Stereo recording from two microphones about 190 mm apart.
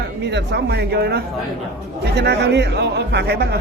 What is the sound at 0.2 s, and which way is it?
Speech, 65° right (ahead or behind).